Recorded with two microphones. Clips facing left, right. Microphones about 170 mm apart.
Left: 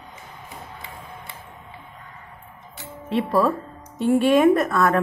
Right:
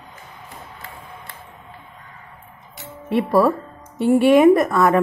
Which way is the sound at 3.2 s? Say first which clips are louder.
Right 4 dB; 10° right (ahead or behind).